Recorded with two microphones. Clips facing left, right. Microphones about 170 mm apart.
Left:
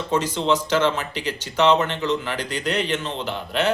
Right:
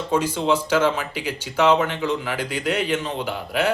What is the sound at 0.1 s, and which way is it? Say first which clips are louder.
Speech: right 1 dB; 10° right (ahead or behind).